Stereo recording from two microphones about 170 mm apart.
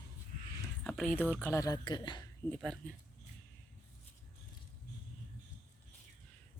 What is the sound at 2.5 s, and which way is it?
Speech, 5° left (ahead or behind).